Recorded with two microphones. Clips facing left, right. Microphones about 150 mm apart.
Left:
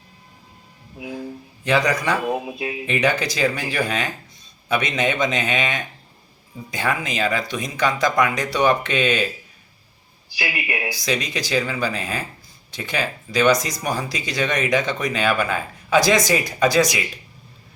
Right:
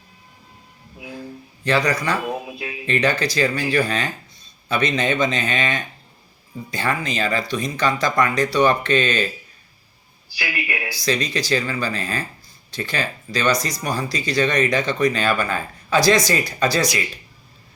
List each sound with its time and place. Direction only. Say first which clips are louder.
0.9 s train: left 4 dB; 15° left (ahead or behind)
1.6 s speech: even; 15° left (ahead or behind)
10.3 s speech: left 1 dB; 20° left (ahead or behind)